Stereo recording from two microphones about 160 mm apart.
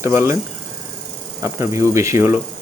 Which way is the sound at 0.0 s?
15° right (ahead or behind).